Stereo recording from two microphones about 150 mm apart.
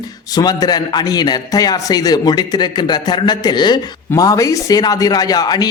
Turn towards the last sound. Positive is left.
turn(degrees=25)  # may be behind; listen again after turning